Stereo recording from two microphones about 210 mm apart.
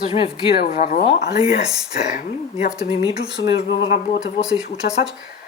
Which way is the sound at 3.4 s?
55° left (ahead or behind).